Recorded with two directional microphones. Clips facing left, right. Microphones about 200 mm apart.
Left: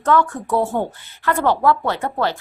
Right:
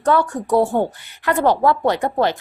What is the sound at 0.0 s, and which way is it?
A woman's voice, 15° right (ahead or behind).